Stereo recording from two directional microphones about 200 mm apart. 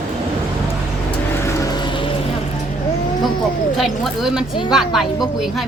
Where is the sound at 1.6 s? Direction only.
20° left (ahead or behind).